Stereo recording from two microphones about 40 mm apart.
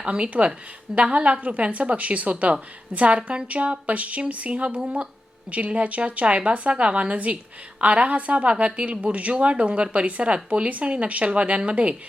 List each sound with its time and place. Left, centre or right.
0.0 s a woman's voice: right